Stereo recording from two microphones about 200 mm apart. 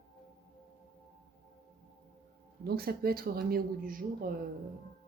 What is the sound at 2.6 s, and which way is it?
Speech, 50° right (ahead or behind).